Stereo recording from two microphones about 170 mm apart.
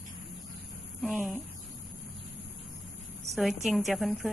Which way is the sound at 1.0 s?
Centre (ahead or behind).